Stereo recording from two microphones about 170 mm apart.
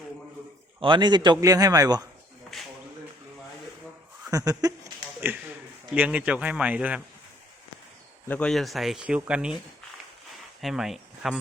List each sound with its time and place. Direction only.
0.8 s a man's voice: 25° right (ahead or behind)
4.3 s speech: 20° right (ahead or behind)
8.3 s speech: 5° left (ahead or behind)
10.6 s speech: centre (ahead or behind)